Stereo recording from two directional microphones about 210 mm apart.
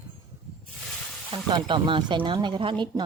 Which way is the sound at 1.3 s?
20° right (ahead or behind).